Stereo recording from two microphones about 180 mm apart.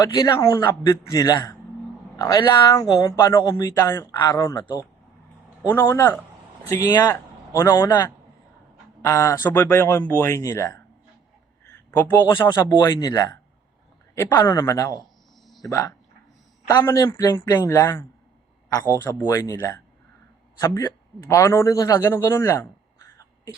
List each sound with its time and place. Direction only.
0.0 s a man's voice: 20° left (ahead or behind)
5.6 s a man's voice: 15° left (ahead or behind)
11.9 s speech: 10° left (ahead or behind)
12.3 s a man's voice: 20° left (ahead or behind)
19.0 s a man's voice: 15° left (ahead or behind)